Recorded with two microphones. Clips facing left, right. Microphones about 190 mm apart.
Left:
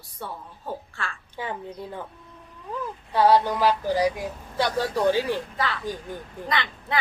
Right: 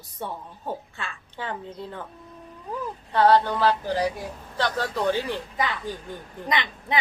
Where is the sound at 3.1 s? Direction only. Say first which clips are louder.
Even; 10° left (ahead or behind).